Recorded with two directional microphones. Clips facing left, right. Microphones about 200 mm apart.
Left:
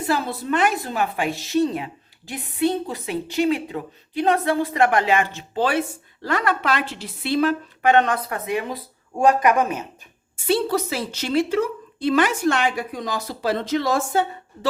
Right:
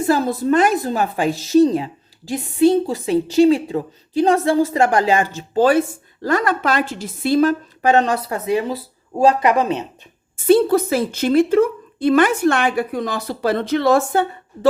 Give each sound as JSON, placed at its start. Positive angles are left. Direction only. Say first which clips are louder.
{"t": 0.0, "sound": "a woman's voice", "louder": "right 7 dB", "side_deg": -45}
{"t": 10.4, "sound": "a woman's voice", "louder": "right 8 dB", "side_deg": -50}